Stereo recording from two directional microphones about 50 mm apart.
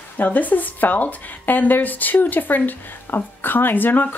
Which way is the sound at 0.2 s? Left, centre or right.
Left.